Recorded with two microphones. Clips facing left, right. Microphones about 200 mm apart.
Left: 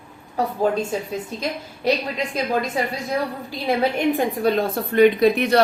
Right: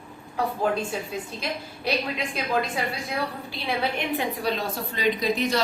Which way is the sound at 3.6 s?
45° left (ahead or behind).